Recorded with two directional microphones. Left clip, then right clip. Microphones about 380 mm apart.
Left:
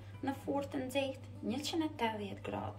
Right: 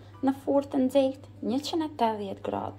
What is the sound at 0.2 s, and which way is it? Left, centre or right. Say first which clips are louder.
Speech: right 11 dB; centre.